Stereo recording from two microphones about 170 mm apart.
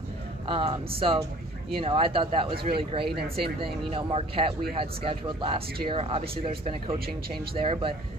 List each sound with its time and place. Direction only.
0.5 s speech: 35° right (ahead or behind)